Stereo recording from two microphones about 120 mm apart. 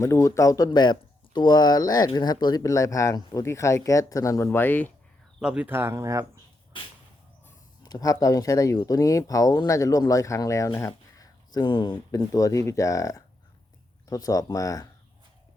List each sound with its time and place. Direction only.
0.0 s speech: 25° left (ahead or behind)
5.4 s speech: 5° right (ahead or behind)
5.7 s speech: 20° right (ahead or behind)
6.7 s whip: 45° left (ahead or behind)
7.9 s speech: 30° left (ahead or behind)